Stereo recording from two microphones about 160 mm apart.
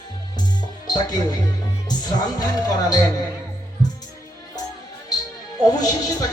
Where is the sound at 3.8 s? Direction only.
25° left (ahead or behind).